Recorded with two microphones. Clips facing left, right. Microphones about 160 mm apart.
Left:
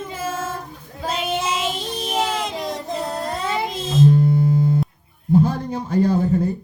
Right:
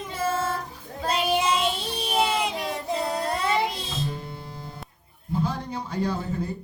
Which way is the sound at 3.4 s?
Centre (ahead or behind).